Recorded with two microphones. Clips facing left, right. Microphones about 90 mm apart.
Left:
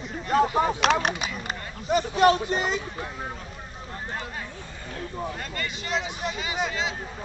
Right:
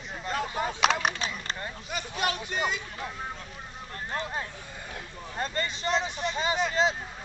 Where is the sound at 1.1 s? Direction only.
10° left (ahead or behind).